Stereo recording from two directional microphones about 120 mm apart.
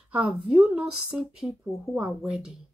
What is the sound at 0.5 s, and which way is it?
Speech, 5° right (ahead or behind).